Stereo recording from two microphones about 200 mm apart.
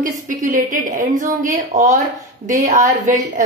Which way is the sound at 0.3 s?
40° right (ahead or behind).